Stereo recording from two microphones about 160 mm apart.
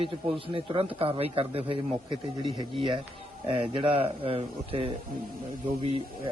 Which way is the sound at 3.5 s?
35° right (ahead or behind).